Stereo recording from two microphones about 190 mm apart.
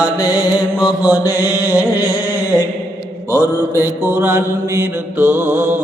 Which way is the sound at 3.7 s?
10° right (ahead or behind).